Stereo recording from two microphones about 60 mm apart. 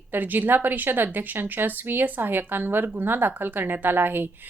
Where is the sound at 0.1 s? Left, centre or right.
Right.